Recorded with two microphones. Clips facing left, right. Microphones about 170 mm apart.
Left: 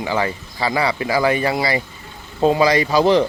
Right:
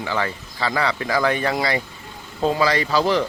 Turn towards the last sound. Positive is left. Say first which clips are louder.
# left 5 dB
turn(degrees=20)  # may be behind; listen again after turning